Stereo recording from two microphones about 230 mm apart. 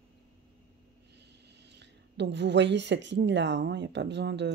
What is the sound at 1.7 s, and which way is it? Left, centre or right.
A woman's voice, right.